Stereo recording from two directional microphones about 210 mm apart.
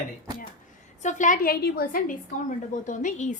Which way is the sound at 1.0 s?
35° left (ahead or behind).